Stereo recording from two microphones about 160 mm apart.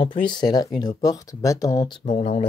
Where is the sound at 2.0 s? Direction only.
40° left (ahead or behind).